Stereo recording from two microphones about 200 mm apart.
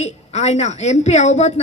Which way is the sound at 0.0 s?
35° left (ahead or behind).